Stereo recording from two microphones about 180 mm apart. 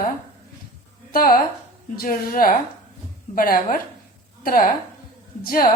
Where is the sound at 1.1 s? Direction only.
55° left (ahead or behind).